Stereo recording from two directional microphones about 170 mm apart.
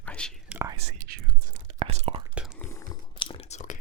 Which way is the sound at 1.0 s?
65° right (ahead or behind).